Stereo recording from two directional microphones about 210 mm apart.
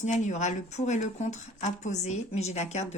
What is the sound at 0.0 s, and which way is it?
Speech, 35° left (ahead or behind).